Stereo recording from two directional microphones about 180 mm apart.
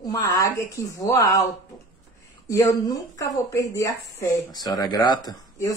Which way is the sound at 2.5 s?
20° left (ahead or behind).